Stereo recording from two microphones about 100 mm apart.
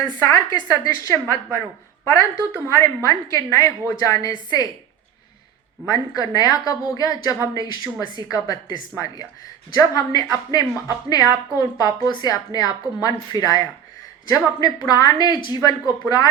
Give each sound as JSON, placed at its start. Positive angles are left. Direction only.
{"t": 0.0, "sound": "a woman's voice", "side_deg": 30}
{"t": 2.6, "sound": "a woman's voice", "side_deg": 30}
{"t": 5.9, "sound": "a woman's voice", "side_deg": 40}